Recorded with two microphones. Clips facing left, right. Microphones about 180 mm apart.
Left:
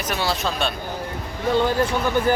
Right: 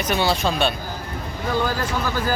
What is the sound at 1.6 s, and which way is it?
Speech, 25° left (ahead or behind).